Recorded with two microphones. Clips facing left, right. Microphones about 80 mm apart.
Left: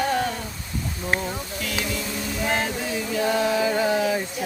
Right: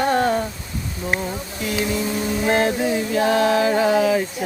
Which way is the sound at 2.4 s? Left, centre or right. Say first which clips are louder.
Right 7 dB; right.